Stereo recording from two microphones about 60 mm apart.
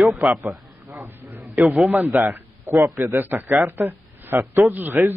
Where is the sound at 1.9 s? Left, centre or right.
Right.